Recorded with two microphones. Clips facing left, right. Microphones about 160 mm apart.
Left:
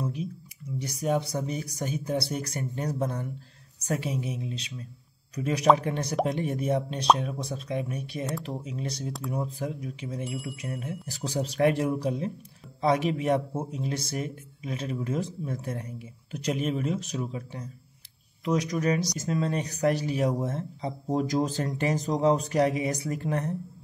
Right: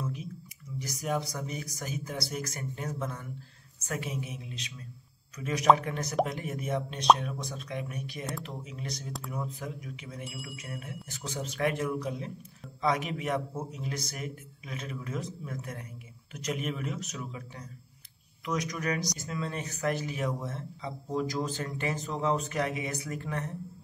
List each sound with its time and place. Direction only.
0.7 s speech: 30° left (ahead or behind)